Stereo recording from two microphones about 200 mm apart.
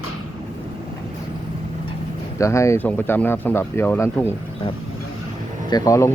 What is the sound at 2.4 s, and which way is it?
Speech, 15° left (ahead or behind).